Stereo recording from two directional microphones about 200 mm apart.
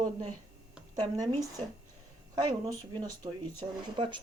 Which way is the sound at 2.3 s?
20° right (ahead or behind).